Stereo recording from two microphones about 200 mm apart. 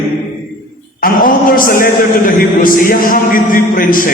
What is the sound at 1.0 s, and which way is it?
A man's voice, 45° left (ahead or behind).